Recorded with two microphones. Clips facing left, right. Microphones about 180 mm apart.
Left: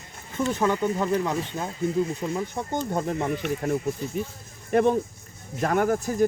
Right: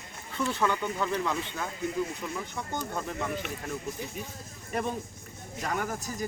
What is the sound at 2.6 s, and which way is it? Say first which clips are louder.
Speech: left 5 dB; 50° left (ahead or behind).